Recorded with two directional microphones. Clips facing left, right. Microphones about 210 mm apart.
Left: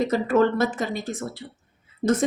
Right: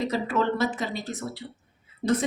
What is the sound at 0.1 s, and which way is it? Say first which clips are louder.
A woman's voice: left 6 dB; 50° left (ahead or behind).